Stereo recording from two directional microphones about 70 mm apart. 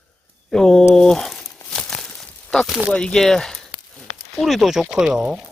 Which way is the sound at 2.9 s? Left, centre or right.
Centre.